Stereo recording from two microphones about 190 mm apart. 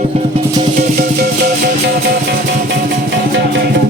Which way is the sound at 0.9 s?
50° right (ahead or behind).